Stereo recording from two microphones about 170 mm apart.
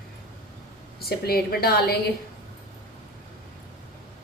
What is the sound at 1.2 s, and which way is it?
Speech, 65° left (ahead or behind).